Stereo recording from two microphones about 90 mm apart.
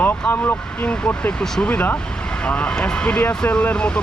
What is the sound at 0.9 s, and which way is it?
Speech, 10° left (ahead or behind).